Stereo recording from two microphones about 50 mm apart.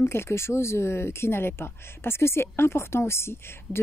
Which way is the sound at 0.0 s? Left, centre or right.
Left.